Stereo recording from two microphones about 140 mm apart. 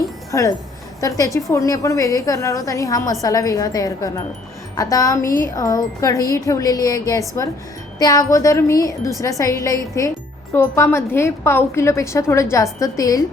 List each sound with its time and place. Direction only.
0.3 s a woman's voice: 25° left (ahead or behind)